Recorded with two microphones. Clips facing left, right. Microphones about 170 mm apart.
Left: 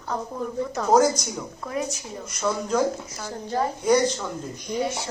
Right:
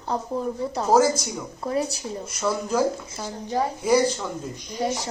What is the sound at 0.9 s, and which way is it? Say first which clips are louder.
Speech: even; 5° right (ahead or behind).